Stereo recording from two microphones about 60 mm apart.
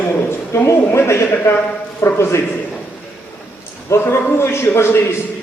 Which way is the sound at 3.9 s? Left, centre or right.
Left.